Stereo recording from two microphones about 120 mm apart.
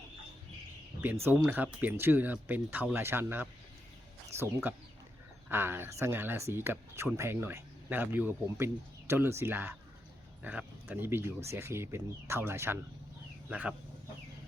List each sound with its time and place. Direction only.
1.2 s speech: 15° right (ahead or behind)
13.5 s speech: 10° right (ahead or behind)